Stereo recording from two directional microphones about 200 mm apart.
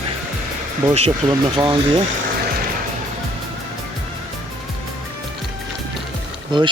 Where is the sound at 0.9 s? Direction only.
30° right (ahead or behind).